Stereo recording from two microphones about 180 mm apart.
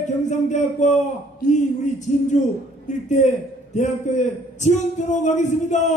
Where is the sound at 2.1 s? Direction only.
40° left (ahead or behind).